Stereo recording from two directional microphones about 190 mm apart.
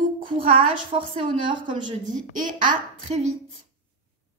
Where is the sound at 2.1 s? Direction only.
45° right (ahead or behind).